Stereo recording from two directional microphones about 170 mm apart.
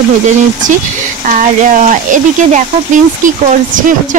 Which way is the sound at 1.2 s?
50° right (ahead or behind).